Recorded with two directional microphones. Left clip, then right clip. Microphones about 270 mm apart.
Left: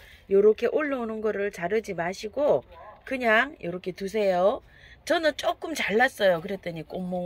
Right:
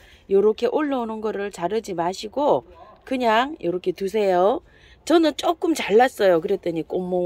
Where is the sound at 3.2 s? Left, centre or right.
Right.